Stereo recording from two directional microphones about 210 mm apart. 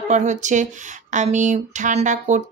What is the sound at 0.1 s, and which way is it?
Speech, 35° right (ahead or behind).